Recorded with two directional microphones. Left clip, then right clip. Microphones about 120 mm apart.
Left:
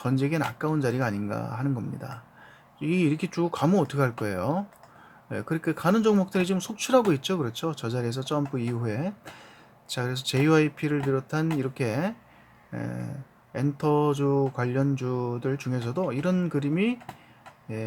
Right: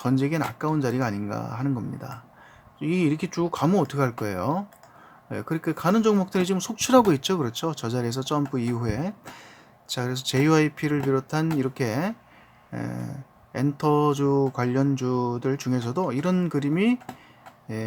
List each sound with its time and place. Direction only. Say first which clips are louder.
0.0 s speech: right 2 dB; 20° right (ahead or behind)